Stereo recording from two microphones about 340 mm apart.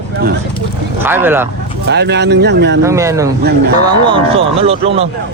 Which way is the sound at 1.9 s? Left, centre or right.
Right.